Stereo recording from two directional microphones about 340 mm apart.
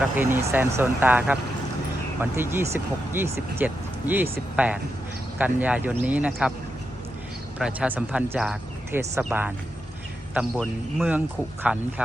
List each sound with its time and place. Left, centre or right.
0.0 s speech: centre
7.6 s speech: centre